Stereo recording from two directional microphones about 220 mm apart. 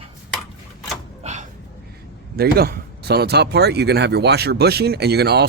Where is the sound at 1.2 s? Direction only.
30° right (ahead or behind).